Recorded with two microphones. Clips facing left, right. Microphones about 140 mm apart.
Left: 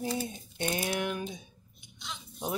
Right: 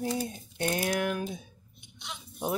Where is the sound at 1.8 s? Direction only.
65° right (ahead or behind).